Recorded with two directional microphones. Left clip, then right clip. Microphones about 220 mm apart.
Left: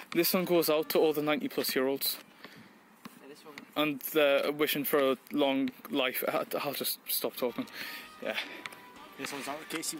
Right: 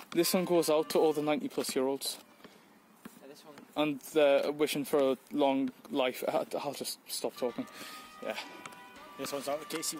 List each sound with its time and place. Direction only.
0.2 s speech: centre (ahead or behind)
3.7 s speech: centre (ahead or behind)
9.2 s speech: 45° right (ahead or behind)